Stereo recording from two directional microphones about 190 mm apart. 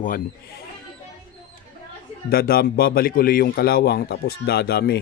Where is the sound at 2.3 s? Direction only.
50° left (ahead or behind).